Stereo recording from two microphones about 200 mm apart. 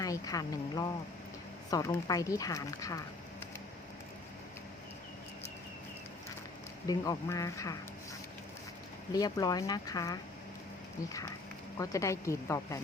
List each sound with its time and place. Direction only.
0.0 s speech: 15° left (ahead or behind)
6.8 s speech: 15° left (ahead or behind)
9.1 s speech: 20° left (ahead or behind)
11.8 s speech: 15° left (ahead or behind)